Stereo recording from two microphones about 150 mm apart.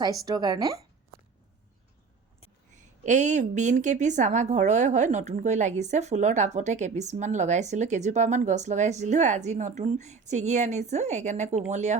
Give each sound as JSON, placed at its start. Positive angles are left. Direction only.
{"t": 0.3, "sound": "a woman's voice", "side_deg": -25}
{"t": 2.7, "sound": "a woman's voice", "side_deg": -50}